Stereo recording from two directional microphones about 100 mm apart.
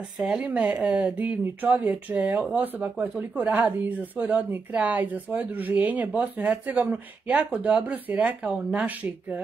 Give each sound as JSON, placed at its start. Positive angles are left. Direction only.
{"t": 0.2, "sound": "speech", "side_deg": -10}